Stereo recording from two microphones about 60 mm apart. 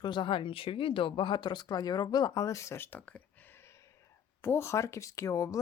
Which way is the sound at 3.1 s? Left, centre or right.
Left.